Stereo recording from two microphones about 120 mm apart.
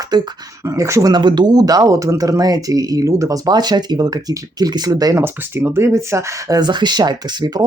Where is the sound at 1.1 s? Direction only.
40° right (ahead or behind).